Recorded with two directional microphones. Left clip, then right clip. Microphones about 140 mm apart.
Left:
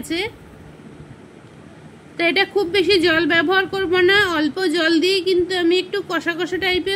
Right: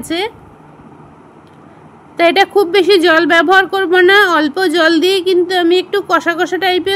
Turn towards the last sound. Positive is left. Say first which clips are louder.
# right 7 dB
turn(degrees=-30)  # may be behind; listen again after turning